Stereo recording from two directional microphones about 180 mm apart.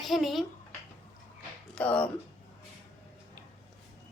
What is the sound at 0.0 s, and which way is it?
Speech, centre (ahead or behind).